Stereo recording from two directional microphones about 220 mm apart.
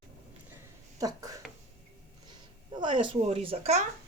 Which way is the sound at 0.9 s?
15° right (ahead or behind).